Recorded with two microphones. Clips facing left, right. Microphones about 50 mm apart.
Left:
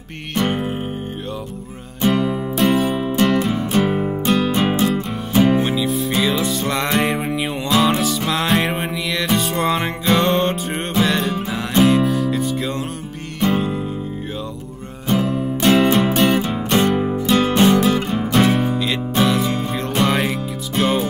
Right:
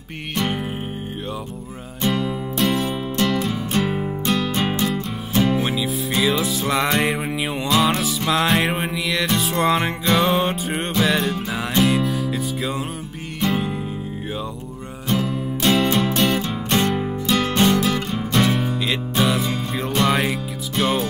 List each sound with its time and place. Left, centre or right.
0.3 s music: centre
2.0 s music: centre
5.6 s music: centre
15.0 s music: centre